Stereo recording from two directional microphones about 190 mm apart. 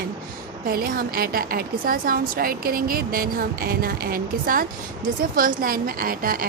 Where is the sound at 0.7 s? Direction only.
50° right (ahead or behind).